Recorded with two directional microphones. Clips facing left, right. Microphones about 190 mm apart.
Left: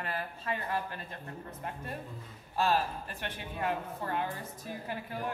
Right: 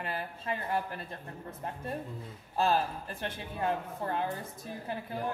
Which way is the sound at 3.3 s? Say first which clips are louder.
Right 1 dB; 25° right (ahead or behind).